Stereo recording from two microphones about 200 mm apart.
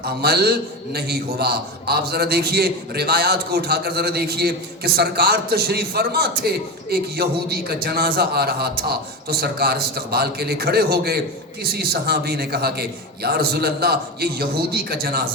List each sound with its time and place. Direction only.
0.0 s a man's voice: 50° right (ahead or behind)